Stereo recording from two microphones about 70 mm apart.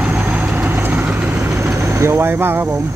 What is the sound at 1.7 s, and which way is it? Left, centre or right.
Speech, right.